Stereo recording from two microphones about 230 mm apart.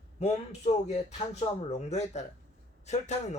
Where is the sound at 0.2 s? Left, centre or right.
Left.